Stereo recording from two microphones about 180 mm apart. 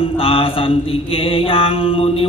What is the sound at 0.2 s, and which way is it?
Mantra, 30° left (ahead or behind).